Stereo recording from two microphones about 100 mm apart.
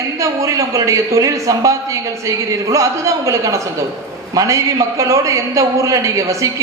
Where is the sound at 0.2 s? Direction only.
30° right (ahead or behind).